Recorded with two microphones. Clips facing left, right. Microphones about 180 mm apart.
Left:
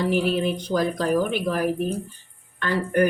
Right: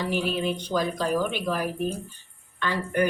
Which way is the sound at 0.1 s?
50° left (ahead or behind).